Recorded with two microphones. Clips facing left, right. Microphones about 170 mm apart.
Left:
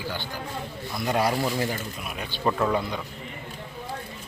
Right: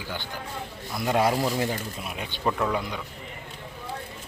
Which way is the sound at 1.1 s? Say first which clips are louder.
Right 1 dB; 15° right (ahead or behind).